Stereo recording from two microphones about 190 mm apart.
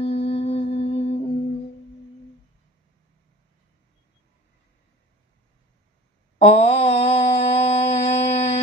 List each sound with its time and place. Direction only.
0.0 s music: 35° left (ahead or behind)
6.3 s mantra: 35° left (ahead or behind)